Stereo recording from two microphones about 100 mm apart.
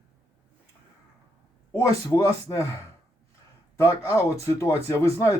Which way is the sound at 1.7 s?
35° left (ahead or behind).